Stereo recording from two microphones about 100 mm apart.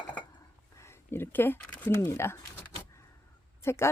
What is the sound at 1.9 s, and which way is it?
A woman's voice, 25° left (ahead or behind).